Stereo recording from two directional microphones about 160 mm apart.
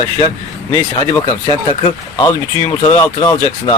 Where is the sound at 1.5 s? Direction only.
35° left (ahead or behind).